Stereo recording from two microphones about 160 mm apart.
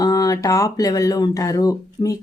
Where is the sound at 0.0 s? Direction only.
25° left (ahead or behind).